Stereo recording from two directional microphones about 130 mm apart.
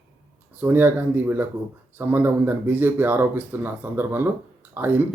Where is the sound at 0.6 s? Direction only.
15° right (ahead or behind).